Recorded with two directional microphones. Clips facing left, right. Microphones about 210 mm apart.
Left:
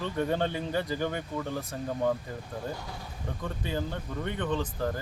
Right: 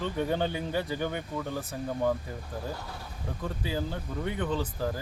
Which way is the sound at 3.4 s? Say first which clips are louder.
Right 1 dB; 5° right (ahead or behind).